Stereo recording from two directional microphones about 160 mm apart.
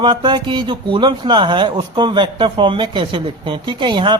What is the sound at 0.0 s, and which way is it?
A man's voice, 30° right (ahead or behind).